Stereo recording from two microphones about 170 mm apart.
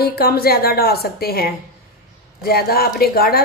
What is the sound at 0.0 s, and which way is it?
A woman's voice, 65° left (ahead or behind).